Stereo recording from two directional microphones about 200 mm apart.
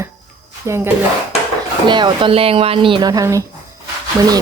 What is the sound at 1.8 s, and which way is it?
Speech, 20° right (ahead or behind).